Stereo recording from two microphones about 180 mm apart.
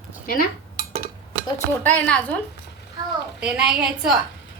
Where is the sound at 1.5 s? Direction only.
10° left (ahead or behind).